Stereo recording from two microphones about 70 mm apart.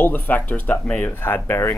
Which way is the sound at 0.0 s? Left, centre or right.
Left.